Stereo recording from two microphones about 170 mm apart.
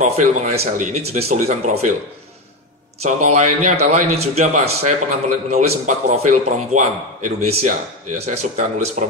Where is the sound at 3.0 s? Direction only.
40° right (ahead or behind).